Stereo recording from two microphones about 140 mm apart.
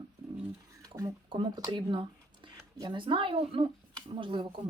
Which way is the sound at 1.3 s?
35° right (ahead or behind).